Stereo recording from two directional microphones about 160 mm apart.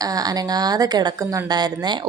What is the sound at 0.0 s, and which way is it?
Speech, 25° right (ahead or behind).